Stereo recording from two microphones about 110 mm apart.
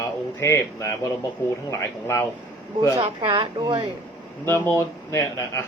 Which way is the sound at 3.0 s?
50° right (ahead or behind).